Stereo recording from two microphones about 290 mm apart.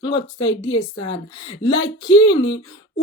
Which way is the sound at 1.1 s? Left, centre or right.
Centre.